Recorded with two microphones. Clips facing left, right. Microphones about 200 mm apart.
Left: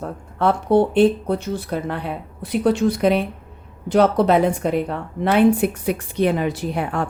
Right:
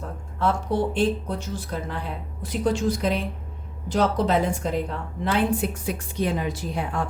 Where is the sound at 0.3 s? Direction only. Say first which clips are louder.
Left 7 dB; 60° left (ahead or behind).